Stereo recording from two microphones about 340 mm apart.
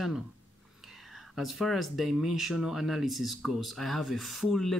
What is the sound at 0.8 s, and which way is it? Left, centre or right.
Speech, centre.